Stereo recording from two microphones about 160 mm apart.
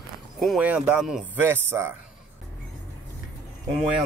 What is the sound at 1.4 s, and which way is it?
Speech, 15° right (ahead or behind).